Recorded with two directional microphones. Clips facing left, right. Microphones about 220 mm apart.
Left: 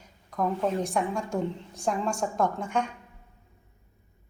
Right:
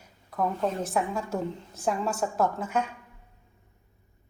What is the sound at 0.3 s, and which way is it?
A woman's voice, 5° right (ahead or behind).